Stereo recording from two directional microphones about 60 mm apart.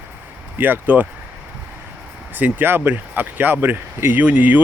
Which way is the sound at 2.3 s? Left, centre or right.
Right.